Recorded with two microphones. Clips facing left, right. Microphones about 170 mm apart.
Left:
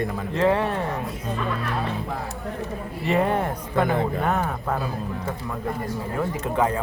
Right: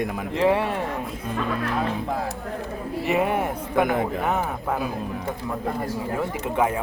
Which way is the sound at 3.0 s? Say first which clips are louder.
Left 1 dB; 10° right (ahead or behind).